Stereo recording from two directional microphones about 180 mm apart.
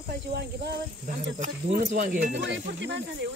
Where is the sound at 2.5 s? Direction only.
85° right.